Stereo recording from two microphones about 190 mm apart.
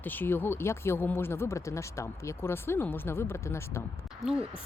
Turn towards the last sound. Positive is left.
turn(degrees=-5)  # may be behind; listen again after turning